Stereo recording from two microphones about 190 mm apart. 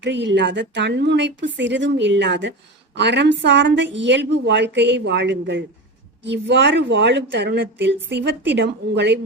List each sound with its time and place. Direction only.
0.0 s a woman's voice: 70° right (ahead or behind)